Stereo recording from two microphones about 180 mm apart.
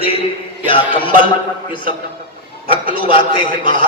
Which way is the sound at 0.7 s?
30° left (ahead or behind).